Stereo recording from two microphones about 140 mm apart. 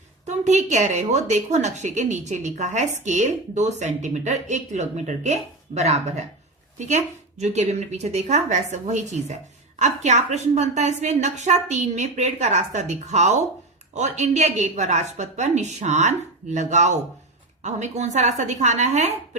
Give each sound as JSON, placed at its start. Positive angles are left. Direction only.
{"t": 0.3, "sound": "a woman's voice", "side_deg": -60}